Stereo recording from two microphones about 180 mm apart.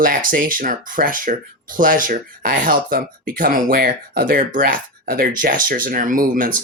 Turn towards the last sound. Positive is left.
turn(degrees=-50)  # may be behind; listen again after turning